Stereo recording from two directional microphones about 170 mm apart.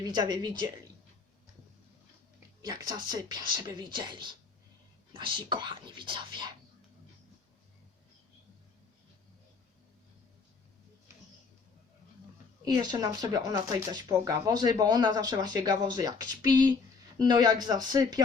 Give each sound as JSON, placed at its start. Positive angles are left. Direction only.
{"t": 0.0, "sound": "speech", "side_deg": -25}
{"t": 2.6, "sound": "speech", "side_deg": -20}
{"t": 12.6, "sound": "speech", "side_deg": -20}